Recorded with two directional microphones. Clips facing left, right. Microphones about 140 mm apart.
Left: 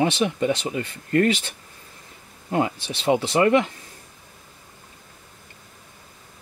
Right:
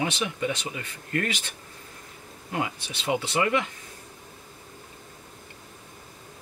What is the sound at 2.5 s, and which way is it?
Speech, 35° left (ahead or behind).